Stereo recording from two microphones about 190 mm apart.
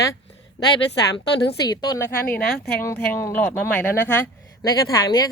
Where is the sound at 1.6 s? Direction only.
20° left (ahead or behind).